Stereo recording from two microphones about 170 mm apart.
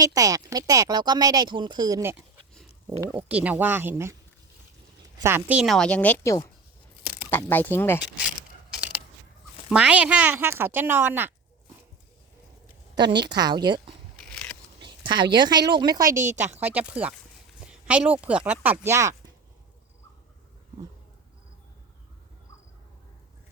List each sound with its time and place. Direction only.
0.0 s speech: 20° right (ahead or behind)
5.2 s a woman's voice: 10° right (ahead or behind); by 8.0 s 15° left (ahead or behind)
9.6 s speech: 5° right (ahead or behind)
13.3 s speech: 25° right (ahead or behind)
14.2 s a sound: 5° left (ahead or behind)
14.8 s speech: 30° right (ahead or behind)
16.1 s speech: 45° right (ahead or behind)
16.6 s speech: 10° right (ahead or behind)